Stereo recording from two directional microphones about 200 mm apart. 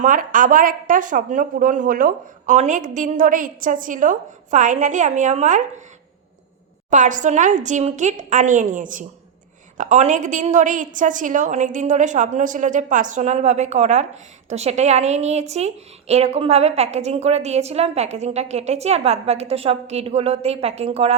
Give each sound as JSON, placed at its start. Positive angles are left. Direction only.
{"t": 0.0, "sound": "a woman's voice", "side_deg": -40}
{"t": 6.9, "sound": "a woman's voice", "side_deg": -40}